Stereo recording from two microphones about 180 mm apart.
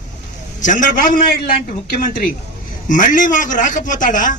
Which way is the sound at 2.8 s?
45° left (ahead or behind).